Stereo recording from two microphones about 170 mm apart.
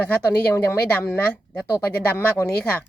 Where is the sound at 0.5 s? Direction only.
10° left (ahead or behind).